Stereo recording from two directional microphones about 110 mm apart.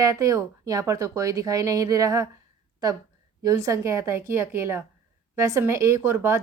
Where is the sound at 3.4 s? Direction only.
30° right (ahead or behind).